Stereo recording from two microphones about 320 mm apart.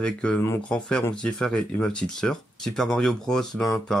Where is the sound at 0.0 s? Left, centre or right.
Centre.